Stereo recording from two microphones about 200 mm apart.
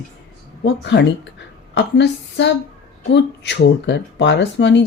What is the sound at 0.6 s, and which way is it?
Speech, 60° left (ahead or behind).